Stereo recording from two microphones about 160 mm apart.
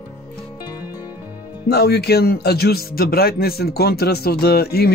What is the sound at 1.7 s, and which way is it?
Speech, 85° left.